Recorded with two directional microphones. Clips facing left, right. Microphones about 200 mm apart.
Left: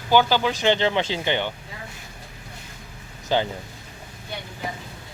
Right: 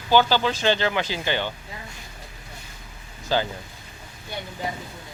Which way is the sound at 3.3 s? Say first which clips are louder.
Left 1 dB; 20° left (ahead or behind).